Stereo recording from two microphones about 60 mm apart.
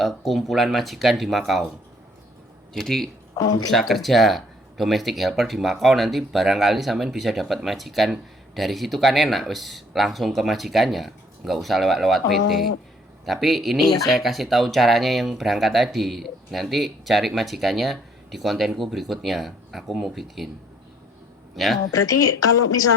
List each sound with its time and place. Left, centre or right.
0.0 s speech: centre
2.7 s speech: centre
21.5 s speech: centre
21.9 s a woman's voice: left